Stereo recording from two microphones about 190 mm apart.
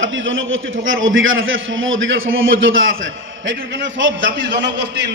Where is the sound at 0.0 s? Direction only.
90° right.